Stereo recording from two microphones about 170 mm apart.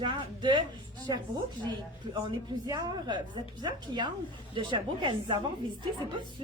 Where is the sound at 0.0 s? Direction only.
30° right (ahead or behind).